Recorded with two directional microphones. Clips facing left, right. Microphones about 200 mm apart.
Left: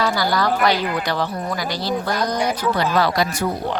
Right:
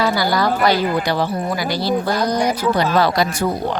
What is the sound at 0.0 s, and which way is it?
A woman's voice, 10° right (ahead or behind).